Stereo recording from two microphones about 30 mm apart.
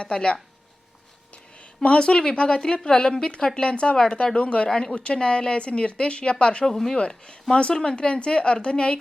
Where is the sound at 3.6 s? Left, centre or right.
Left.